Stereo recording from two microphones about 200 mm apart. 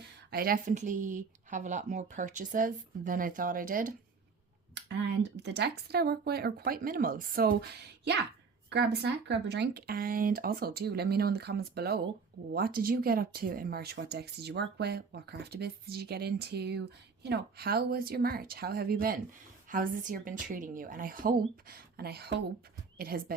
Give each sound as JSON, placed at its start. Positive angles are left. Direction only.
{"t": 0.3, "sound": "speech", "side_deg": -50}
{"t": 4.7, "sound": "speech", "side_deg": -60}